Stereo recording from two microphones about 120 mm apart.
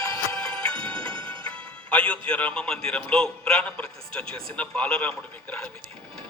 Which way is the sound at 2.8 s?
5° left (ahead or behind).